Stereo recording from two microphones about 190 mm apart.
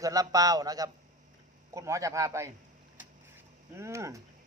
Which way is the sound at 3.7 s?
15° right (ahead or behind).